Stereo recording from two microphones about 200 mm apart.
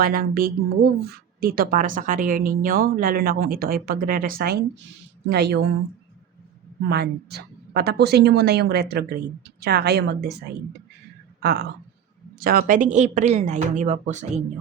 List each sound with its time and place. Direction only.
0.0 s a woman's voice: 45° right (ahead or behind)
6.8 s speech: 55° right (ahead or behind)
11.4 s speech: 55° right (ahead or behind); by 14.3 s 35° right (ahead or behind)